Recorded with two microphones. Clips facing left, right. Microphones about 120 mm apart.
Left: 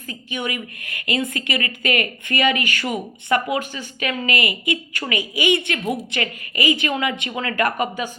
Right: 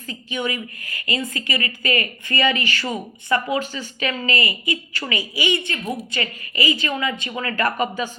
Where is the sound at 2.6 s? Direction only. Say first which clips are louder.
Left 1 dB; 45° left (ahead or behind).